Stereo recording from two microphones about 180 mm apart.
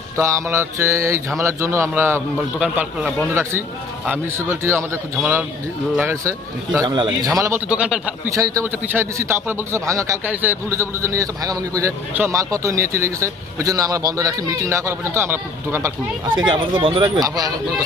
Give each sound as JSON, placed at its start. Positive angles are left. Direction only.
{"t": 0.2, "sound": "a man's voice", "side_deg": -15}
{"t": 6.7, "sound": "a man's voice", "side_deg": -25}
{"t": 7.7, "sound": "a man's voice", "side_deg": -5}
{"t": 8.4, "sound": "a man's voice", "side_deg": -20}
{"t": 16.4, "sound": "speech", "side_deg": -25}